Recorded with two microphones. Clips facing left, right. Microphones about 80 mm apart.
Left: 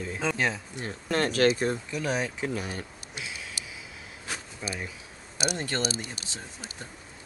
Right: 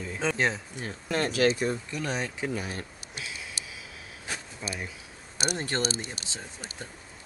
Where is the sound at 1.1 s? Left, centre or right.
Left.